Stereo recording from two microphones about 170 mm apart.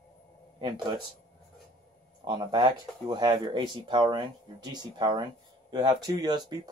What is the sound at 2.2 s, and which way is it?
Speech, 25° right (ahead or behind).